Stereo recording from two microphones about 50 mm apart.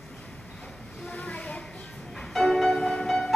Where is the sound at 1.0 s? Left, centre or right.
Left.